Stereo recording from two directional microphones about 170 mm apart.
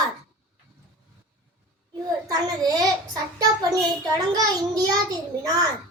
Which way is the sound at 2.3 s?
20° right (ahead or behind).